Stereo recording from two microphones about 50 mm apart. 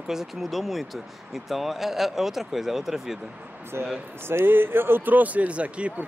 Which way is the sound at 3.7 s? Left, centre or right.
Right.